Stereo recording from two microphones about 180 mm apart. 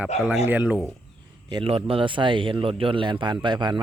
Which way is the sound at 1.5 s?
30° right (ahead or behind).